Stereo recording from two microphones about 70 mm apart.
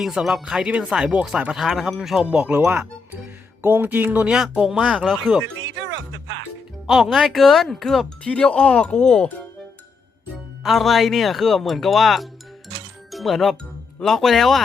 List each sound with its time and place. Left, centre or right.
0.0 s speech: centre
2.6 s speech: right
4.3 s speech: centre
6.8 s speech: centre
8.2 s speech: centre
10.6 s speech: centre